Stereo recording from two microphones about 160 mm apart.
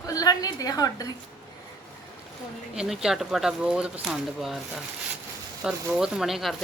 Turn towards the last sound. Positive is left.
turn(degrees=0)  # may be behind; listen again after turning